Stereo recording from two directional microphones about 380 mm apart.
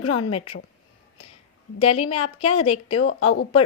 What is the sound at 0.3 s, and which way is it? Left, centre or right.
Speech, centre.